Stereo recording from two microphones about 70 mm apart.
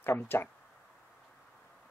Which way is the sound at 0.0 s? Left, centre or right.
Left.